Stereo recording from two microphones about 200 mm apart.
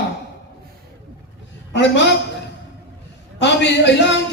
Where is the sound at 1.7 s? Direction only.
60° left (ahead or behind).